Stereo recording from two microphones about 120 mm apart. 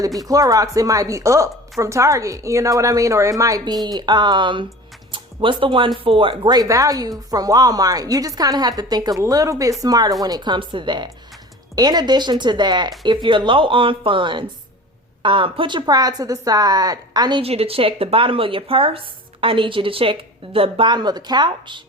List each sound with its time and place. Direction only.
0.2 s a woman's voice: 30° right (ahead or behind); by 6.5 s 45° right (ahead or behind)
6.5 s a woman's voice: 30° right (ahead or behind)
17.4 s speech: 55° right (ahead or behind); by 21.8 s 40° right (ahead or behind)